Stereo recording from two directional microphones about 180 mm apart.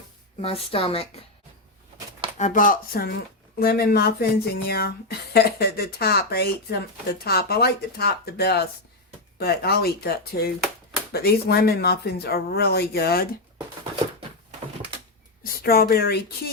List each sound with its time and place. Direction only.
0.3 s a woman's voice: 35° left (ahead or behind)
2.4 s speech: 45° left (ahead or behind)
15.4 s speech: 55° left (ahead or behind)